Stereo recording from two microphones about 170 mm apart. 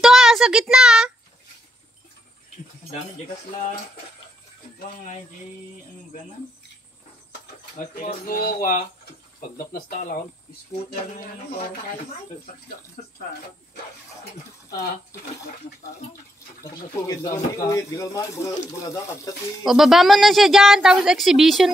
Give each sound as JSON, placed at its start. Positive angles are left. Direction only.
{"t": 0.0, "sound": "a sound", "side_deg": -5}
{"t": 7.7, "sound": "speech", "side_deg": 50}
{"t": 13.0, "sound": "speech", "side_deg": 55}
{"t": 17.1, "sound": "speech", "side_deg": 20}
{"t": 19.6, "sound": "a woman's voice", "side_deg": 0}